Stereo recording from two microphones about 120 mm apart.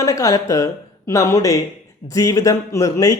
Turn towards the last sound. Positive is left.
turn(degrees=30)  # may be behind; listen again after turning